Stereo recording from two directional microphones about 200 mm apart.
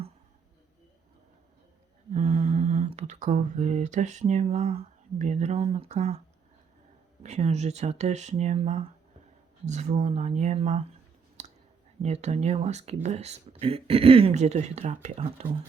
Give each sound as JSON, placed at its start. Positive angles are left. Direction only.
{"t": 2.1, "sound": "a sound", "side_deg": -35}
{"t": 5.2, "sound": "speech", "side_deg": -35}
{"t": 11.4, "sound": "clicking", "side_deg": -35}
{"t": 12.0, "sound": "speech", "side_deg": -35}